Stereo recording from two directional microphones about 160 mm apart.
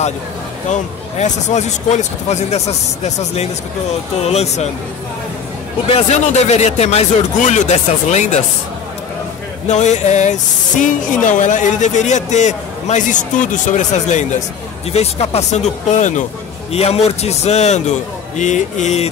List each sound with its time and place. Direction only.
0.7 s speech: 45° left (ahead or behind)
5.9 s speech: 40° left (ahead or behind)
9.7 s a man's voice: 45° left (ahead or behind)